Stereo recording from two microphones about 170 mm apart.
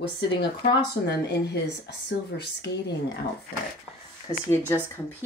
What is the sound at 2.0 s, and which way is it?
Speech, 70° left (ahead or behind).